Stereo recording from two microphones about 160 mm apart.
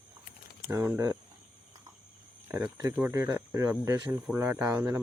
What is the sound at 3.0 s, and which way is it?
Speech, 15° right (ahead or behind).